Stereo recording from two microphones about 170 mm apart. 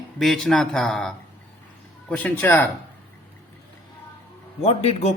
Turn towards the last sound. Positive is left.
turn(degrees=40)  # may be behind; listen again after turning